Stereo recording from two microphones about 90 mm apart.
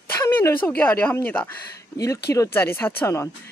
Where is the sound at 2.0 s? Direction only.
40° left (ahead or behind).